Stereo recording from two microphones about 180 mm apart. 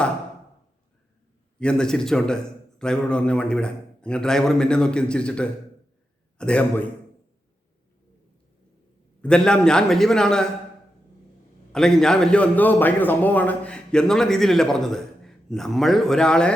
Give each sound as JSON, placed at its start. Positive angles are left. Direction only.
{"t": 1.5, "sound": "a man's voice", "side_deg": 5}
{"t": 9.2, "sound": "a man's voice", "side_deg": 5}
{"t": 11.7, "sound": "a man's voice", "side_deg": 5}